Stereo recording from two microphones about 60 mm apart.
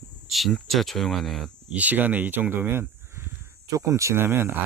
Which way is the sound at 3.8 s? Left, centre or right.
Right.